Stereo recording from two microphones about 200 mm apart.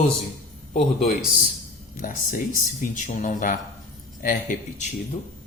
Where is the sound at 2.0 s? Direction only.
40° left (ahead or behind).